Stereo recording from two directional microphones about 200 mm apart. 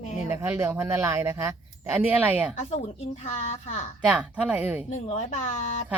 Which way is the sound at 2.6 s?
35° left (ahead or behind).